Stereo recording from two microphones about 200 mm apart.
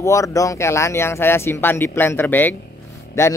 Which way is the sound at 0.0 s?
15° left (ahead or behind).